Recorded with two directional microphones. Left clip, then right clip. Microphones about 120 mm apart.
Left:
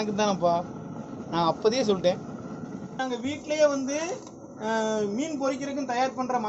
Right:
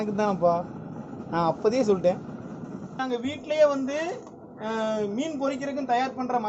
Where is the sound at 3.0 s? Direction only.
15° right (ahead or behind).